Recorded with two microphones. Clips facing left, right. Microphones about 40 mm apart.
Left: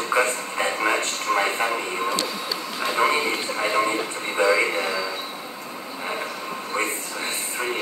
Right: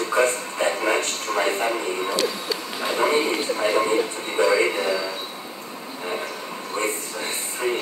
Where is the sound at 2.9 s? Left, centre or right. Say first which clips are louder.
Right 1 dB; left.